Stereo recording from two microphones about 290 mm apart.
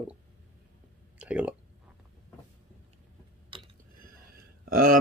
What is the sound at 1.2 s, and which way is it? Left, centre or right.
Speech, centre.